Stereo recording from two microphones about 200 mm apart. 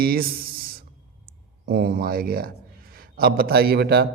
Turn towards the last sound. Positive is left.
turn(degrees=-50)  # may be behind; listen again after turning